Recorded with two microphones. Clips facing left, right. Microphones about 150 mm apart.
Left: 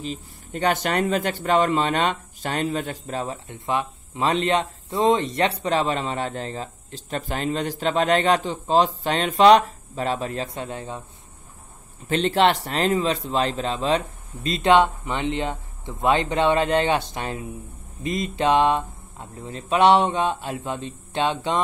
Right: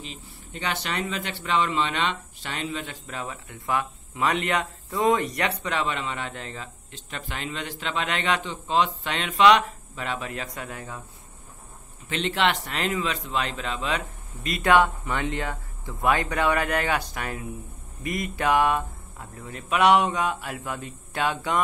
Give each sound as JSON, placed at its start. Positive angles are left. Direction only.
{"t": 0.0, "sound": "speech", "side_deg": 40}
{"t": 12.1, "sound": "speech", "side_deg": 35}